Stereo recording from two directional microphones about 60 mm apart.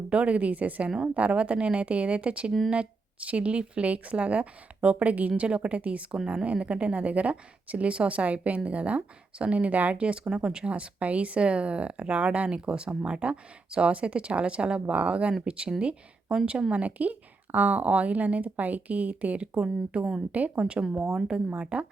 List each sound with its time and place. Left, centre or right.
0.1 s a woman's voice: right
21.2 s speech: centre